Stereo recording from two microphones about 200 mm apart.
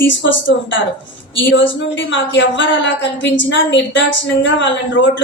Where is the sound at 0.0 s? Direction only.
65° left (ahead or behind).